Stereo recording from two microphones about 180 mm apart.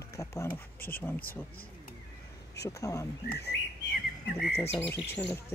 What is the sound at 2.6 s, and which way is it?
Speech, 20° left (ahead or behind).